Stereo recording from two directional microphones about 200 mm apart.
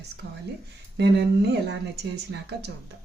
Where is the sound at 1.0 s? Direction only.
55° right (ahead or behind).